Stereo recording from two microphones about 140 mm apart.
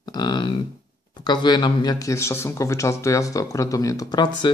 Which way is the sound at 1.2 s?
30° left (ahead or behind).